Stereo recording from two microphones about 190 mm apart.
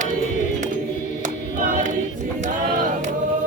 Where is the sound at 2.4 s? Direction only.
40° right (ahead or behind).